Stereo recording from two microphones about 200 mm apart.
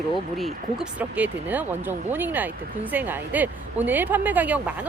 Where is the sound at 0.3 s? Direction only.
Centre (ahead or behind).